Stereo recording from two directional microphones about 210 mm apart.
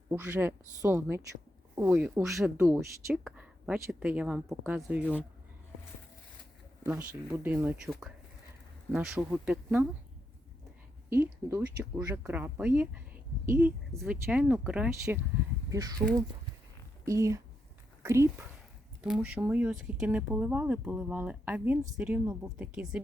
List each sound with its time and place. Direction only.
0.1 s speech: 10° right (ahead or behind)
6.8 s speech: 10° right (ahead or behind)
11.1 s speech: 10° right (ahead or behind)
15.7 s speech: 15° right (ahead or behind)
17.1 s speech: 15° right (ahead or behind)